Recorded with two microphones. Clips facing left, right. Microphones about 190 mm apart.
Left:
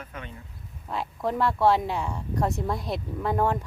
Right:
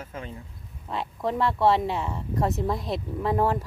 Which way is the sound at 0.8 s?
Centre (ahead or behind).